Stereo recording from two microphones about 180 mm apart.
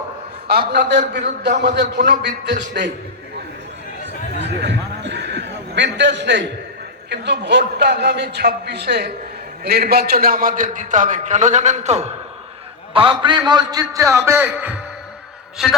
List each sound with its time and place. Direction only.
0.7 s a man's voice: 70° right (ahead or behind)
4.0 s a sound: 75° right (ahead or behind)
7.1 s a man's voice: 75° right (ahead or behind); by 12.0 s 40° right (ahead or behind)
12.9 s a man's voice: 30° right (ahead or behind); by 14.8 s 10° right (ahead or behind)